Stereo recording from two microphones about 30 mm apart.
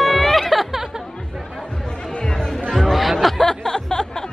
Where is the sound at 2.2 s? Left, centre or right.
Centre.